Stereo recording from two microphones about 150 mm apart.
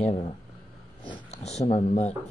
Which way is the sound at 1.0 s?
35° left (ahead or behind).